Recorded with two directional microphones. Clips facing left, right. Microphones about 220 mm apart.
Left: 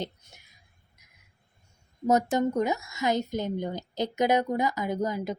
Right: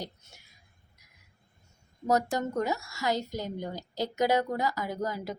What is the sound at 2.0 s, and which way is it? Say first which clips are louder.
Speech: left 4 dB; 20° left (ahead or behind).